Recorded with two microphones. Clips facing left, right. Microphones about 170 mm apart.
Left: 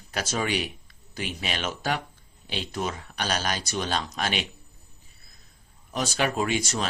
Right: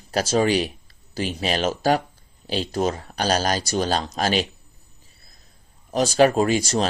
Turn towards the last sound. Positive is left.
turn(degrees=-35)  # may be behind; listen again after turning